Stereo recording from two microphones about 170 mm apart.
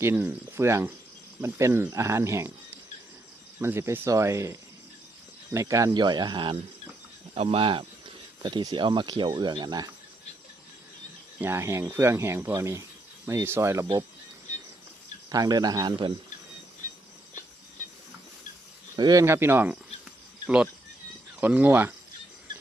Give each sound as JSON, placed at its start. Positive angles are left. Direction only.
{"t": 0.0, "sound": "speech", "side_deg": -10}
{"t": 11.3, "sound": "speech", "side_deg": -15}
{"t": 15.3, "sound": "speech", "side_deg": -25}
{"t": 18.9, "sound": "speech", "side_deg": -25}
{"t": 19.2, "sound": "speech", "side_deg": -15}
{"t": 21.4, "sound": "speech", "side_deg": -10}